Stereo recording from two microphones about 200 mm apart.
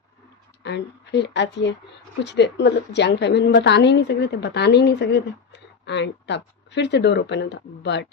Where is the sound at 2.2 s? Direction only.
60° left (ahead or behind).